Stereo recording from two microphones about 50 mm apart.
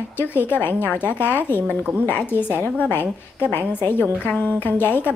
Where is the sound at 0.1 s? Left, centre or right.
Left.